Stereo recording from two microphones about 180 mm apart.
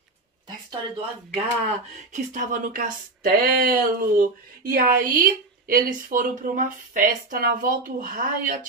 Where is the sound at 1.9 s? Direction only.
45° right (ahead or behind).